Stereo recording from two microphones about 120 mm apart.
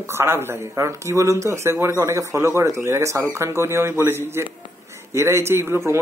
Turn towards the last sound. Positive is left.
turn(degrees=-20)  # may be behind; listen again after turning